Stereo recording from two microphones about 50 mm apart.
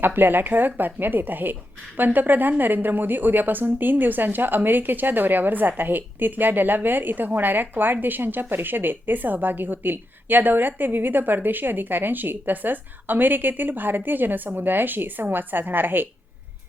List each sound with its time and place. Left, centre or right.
0.0 s speech: right